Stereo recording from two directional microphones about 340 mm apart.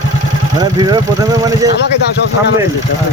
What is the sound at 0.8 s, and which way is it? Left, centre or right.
Speech, centre.